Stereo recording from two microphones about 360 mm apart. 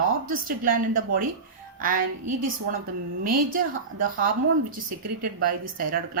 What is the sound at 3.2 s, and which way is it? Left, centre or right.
Speech, right.